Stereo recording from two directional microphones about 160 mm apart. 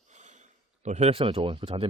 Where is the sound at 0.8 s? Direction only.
45° right (ahead or behind).